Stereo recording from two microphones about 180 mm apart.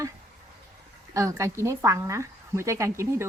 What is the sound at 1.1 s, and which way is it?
Speech, 15° right (ahead or behind).